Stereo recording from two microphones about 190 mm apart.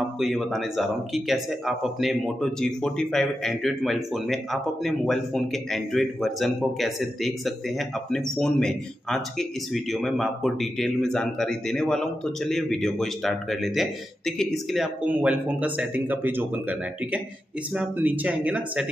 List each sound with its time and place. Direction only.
0.2 s speech: centre (ahead or behind)